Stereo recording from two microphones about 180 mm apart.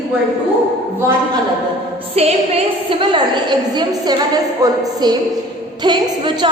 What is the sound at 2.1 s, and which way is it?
A woman's voice, 35° right (ahead or behind).